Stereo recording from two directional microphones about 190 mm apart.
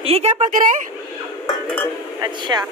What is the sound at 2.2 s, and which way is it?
Speech, 20° right (ahead or behind).